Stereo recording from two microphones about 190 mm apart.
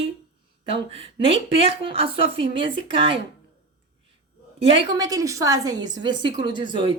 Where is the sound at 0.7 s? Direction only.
30° right (ahead or behind).